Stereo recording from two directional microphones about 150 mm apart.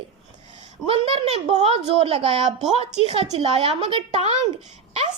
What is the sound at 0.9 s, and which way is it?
A woman's voice, 45° right (ahead or behind).